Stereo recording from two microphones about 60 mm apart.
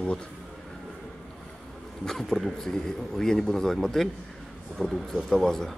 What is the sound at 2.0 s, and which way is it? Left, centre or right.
Speech, centre.